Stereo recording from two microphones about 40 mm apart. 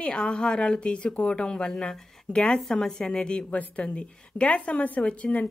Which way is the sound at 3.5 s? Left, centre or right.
Left.